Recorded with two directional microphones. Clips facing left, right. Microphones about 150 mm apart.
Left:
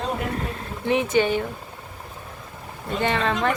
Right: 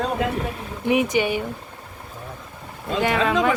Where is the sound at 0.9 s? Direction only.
15° right (ahead or behind).